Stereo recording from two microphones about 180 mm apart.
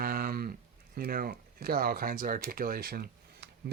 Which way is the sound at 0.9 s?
55° right (ahead or behind).